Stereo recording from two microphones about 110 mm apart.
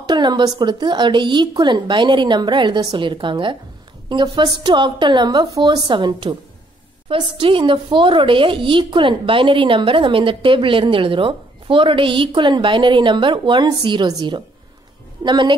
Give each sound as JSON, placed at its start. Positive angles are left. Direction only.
{"t": 0.0, "sound": "a woman's voice", "side_deg": -40}